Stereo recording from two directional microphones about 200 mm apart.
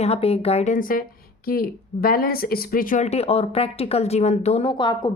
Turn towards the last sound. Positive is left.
turn(degrees=25)  # may be behind; listen again after turning